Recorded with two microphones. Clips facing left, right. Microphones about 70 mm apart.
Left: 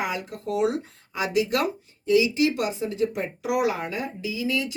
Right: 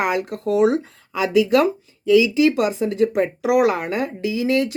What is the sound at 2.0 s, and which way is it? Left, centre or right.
Speech, right.